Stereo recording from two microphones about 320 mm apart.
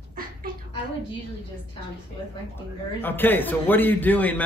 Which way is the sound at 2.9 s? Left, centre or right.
Centre.